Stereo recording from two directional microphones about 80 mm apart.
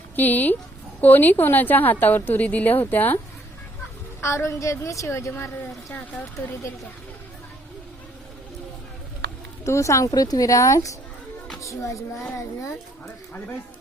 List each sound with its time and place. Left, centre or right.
0.2 s a woman's voice: left
4.2 s a woman's voice: left
9.6 s a woman's voice: left
10.1 s a woman's voice: left